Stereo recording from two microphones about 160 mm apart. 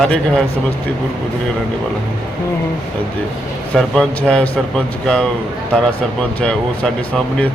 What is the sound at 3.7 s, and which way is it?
Speech, 5° left (ahead or behind).